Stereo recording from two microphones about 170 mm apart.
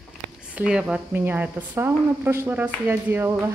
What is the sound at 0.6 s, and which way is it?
A woman's voice, 5° right (ahead or behind).